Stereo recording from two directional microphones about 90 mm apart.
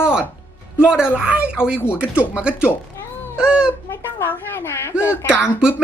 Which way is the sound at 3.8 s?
25° left (ahead or behind).